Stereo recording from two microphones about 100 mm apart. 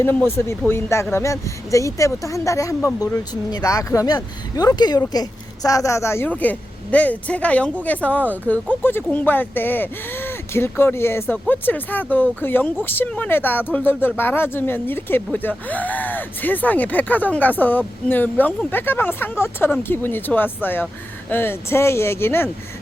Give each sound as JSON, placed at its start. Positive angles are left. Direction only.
{"t": 0.3, "sound": "speech", "side_deg": 25}